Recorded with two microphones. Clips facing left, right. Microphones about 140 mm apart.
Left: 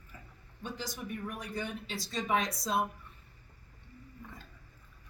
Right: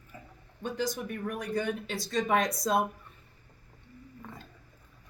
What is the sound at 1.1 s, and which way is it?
Speech, 50° right (ahead or behind).